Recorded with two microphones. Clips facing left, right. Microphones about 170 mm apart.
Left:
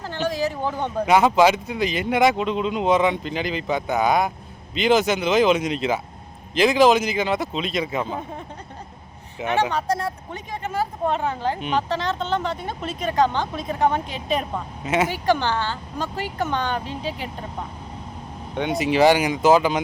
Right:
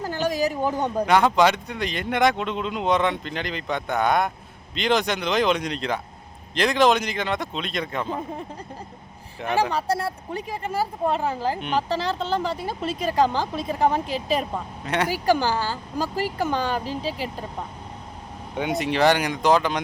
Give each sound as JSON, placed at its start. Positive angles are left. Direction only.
{"t": 0.0, "sound": "a sound", "side_deg": -40}
{"t": 0.3, "sound": "speech", "side_deg": -15}
{"t": 1.0, "sound": "speech", "side_deg": 5}
{"t": 9.4, "sound": "speech", "side_deg": 5}
{"t": 18.5, "sound": "speech", "side_deg": -5}